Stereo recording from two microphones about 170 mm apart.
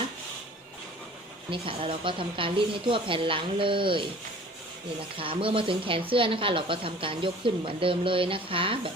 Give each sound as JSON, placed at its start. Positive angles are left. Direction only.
{"t": 1.5, "sound": "speech", "side_deg": -30}
{"t": 5.2, "sound": "speech", "side_deg": -30}